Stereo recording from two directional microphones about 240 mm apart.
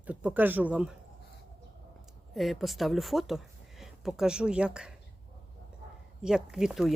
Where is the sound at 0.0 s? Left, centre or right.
Centre.